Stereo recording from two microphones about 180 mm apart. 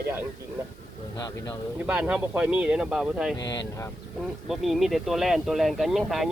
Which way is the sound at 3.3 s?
25° left (ahead or behind).